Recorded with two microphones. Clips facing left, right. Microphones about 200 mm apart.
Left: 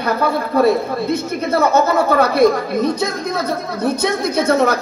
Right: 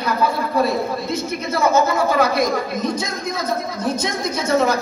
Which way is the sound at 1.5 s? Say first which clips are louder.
Left 3 dB; 60° left (ahead or behind).